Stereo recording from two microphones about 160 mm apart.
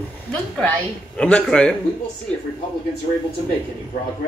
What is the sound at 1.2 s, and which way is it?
Speech, 5° left (ahead or behind).